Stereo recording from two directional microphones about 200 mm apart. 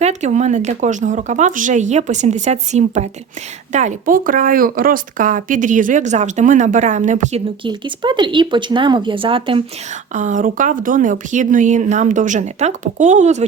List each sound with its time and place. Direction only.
0.0 s speech: 35° right (ahead or behind)
7.6 s speech: 25° right (ahead or behind)
10.2 s speech: 40° right (ahead or behind)